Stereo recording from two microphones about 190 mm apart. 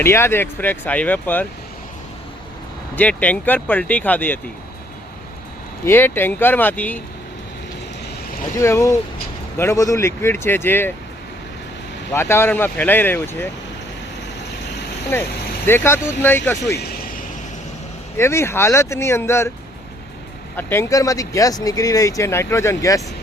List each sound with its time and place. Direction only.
0.0 s speech: 15° left (ahead or behind)
2.9 s speech: 5° left (ahead or behind)
5.8 s speech: 10° left (ahead or behind)
8.5 s speech: 15° left (ahead or behind)
12.1 s speech: 15° left (ahead or behind)
15.1 s speech: 10° left (ahead or behind)
18.2 s speech: 15° left (ahead or behind)
20.6 s speech: 10° left (ahead or behind)